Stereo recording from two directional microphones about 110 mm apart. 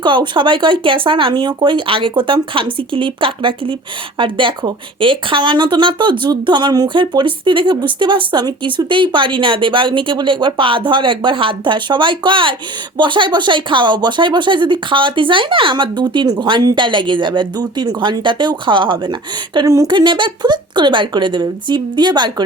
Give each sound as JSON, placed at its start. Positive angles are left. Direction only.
{"t": 0.0, "sound": "speech", "side_deg": -45}
{"t": 19.6, "sound": "speech", "side_deg": -35}